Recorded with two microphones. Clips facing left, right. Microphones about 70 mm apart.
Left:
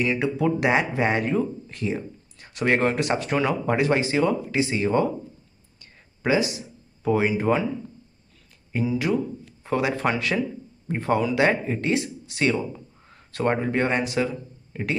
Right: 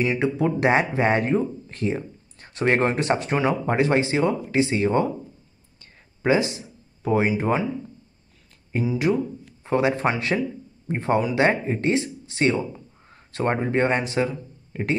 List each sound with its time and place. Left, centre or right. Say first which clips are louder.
0.0 s speech: right 1 dB; right
6.2 s speech: right 2 dB; right
8.8 s speech: right 1 dB; right
14.7 s speech: right 3 dB; right